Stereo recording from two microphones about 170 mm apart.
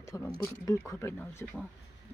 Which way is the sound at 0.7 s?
15° left (ahead or behind).